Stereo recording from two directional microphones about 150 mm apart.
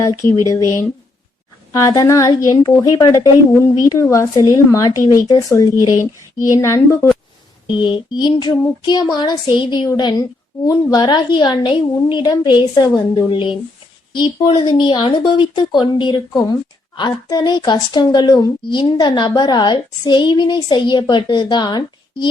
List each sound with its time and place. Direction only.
0.0 s speech: 20° left (ahead or behind)
1.7 s speech: 20° left (ahead or behind)
7.8 s speech: 30° left (ahead or behind)